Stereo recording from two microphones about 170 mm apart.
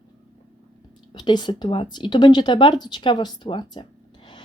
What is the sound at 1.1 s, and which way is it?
Speech, 25° left (ahead or behind).